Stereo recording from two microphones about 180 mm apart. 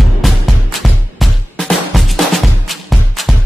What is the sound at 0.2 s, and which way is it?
Music, centre (ahead or behind).